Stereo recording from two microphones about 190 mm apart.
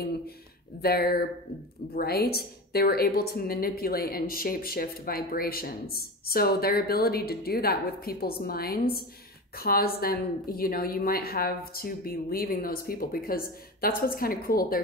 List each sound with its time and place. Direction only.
0.7 s a woman's voice: 55° left (ahead or behind)